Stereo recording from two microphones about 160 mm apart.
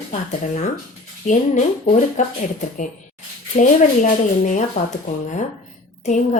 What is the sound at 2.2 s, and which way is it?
A woman's voice, 50° left (ahead or behind).